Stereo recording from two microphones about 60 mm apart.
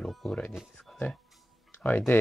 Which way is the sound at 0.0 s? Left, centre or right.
Centre.